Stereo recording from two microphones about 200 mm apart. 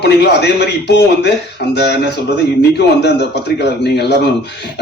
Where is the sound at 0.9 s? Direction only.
55° left (ahead or behind).